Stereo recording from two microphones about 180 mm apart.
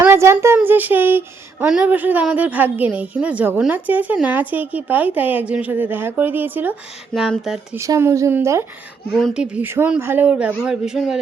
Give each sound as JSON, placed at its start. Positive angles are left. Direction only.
{"t": 0.0, "sound": "speech", "side_deg": -15}
{"t": 7.1, "sound": "a woman's voice", "side_deg": 0}
{"t": 7.8, "sound": "speech", "side_deg": -15}
{"t": 9.1, "sound": "a woman's voice", "side_deg": -5}